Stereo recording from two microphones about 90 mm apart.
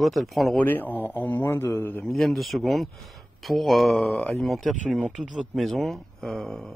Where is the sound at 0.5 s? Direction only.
20° left (ahead or behind).